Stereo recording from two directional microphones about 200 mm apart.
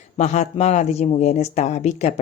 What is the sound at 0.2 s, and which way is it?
Speech, 35° left (ahead or behind).